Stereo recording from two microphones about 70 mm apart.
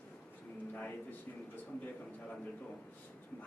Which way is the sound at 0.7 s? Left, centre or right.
Centre.